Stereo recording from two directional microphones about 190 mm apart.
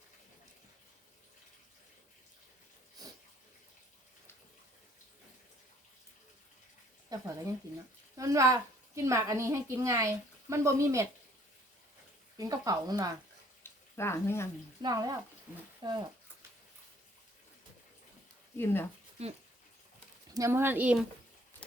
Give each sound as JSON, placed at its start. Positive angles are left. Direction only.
{"t": 3.0, "sound": "bathtub", "side_deg": -20}
{"t": 7.1, "sound": "a sound", "side_deg": -20}
{"t": 8.1, "sound": "a child's voice", "side_deg": -15}
{"t": 12.4, "sound": "speech", "side_deg": -20}
{"t": 13.6, "sound": "a sound", "side_deg": 15}
{"t": 14.8, "sound": "speech", "side_deg": -20}
{"t": 18.5, "sound": "speech", "side_deg": 10}
{"t": 20.3, "sound": "a child's voice", "side_deg": -15}